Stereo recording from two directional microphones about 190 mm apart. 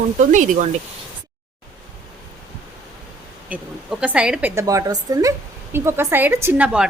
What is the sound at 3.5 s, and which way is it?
A woman's voice, 10° right (ahead or behind).